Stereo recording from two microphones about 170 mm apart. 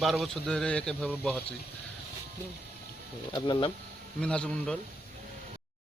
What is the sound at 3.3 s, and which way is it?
Speech, 25° left (ahead or behind).